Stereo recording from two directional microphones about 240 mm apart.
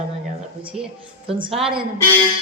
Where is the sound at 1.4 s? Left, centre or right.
Right.